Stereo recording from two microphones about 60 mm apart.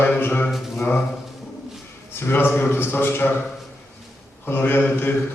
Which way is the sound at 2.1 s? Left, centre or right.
Left.